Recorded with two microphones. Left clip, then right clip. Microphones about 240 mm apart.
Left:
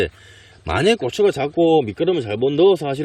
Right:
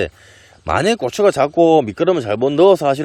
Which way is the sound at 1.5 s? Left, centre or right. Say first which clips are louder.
Right 3 dB; right.